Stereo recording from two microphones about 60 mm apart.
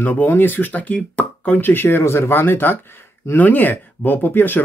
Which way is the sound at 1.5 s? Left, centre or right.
Left.